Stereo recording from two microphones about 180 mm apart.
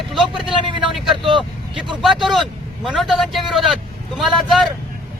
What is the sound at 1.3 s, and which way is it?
Speech, 25° right (ahead or behind).